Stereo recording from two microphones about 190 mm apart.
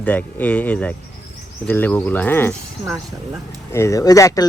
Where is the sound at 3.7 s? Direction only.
15° left (ahead or behind).